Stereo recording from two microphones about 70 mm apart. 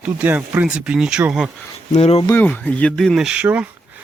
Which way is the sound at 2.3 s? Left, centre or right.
Left.